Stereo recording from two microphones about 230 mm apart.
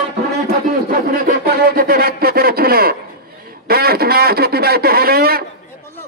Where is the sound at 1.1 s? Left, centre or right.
Right.